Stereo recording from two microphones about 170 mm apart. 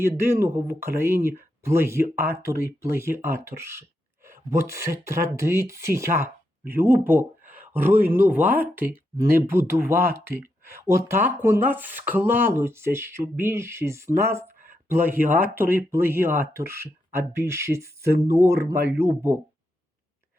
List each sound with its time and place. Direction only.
0.0 s speech: 15° right (ahead or behind)
9.9 s speech: 60° right (ahead or behind)
10.2 s speech: 15° right (ahead or behind)